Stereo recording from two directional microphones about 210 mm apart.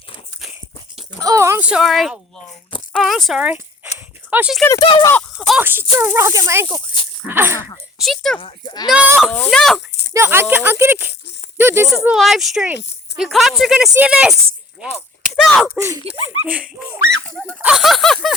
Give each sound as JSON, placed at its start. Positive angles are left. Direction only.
{"t": 1.2, "sound": "speech", "side_deg": -15}
{"t": 3.9, "sound": "a sound", "side_deg": -10}
{"t": 4.6, "sound": "speech", "side_deg": 20}
{"t": 5.1, "sound": "speech", "side_deg": 0}
{"t": 7.9, "sound": "a sound", "side_deg": 0}
{"t": 8.4, "sound": "speech", "side_deg": 25}
{"t": 8.9, "sound": "speech", "side_deg": -5}
{"t": 9.3, "sound": "speech", "side_deg": 5}
{"t": 10.1, "sound": "speech", "side_deg": -10}
{"t": 17.3, "sound": "speech", "side_deg": 5}